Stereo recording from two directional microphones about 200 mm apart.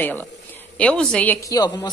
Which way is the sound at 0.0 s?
10° left (ahead or behind).